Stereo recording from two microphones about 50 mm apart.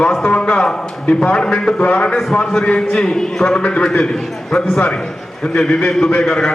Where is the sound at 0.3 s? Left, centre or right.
Centre.